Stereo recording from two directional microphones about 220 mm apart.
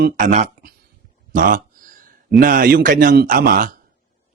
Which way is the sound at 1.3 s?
35° right (ahead or behind).